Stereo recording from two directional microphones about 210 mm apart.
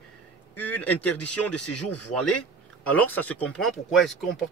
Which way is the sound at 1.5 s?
90° left.